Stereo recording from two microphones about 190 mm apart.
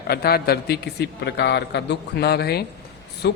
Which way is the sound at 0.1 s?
55° left (ahead or behind).